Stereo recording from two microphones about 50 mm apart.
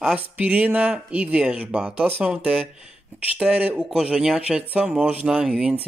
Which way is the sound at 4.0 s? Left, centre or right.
Centre.